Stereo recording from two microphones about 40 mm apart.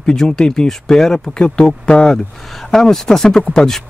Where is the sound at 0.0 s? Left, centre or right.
Centre.